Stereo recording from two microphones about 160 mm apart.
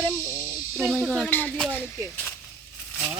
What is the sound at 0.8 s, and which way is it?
Speech, 5° right (ahead or behind).